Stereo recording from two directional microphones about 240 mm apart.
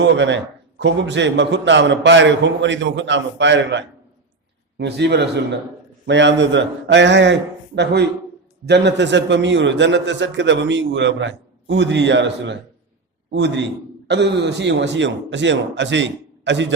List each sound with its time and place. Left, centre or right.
0.0 s a man's voice: right
8.6 s a man's voice: right